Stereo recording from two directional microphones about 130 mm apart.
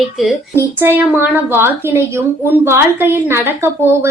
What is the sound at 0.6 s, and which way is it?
A woman's voice, 15° right (ahead or behind).